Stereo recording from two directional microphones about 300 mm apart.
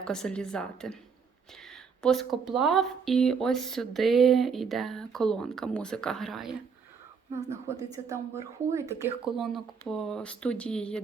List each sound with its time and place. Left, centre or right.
0.0 s speech: centre
2.0 s speech: centre
7.7 s speech: centre